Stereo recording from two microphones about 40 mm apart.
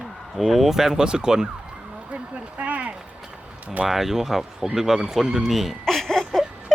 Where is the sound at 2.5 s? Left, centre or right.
Right.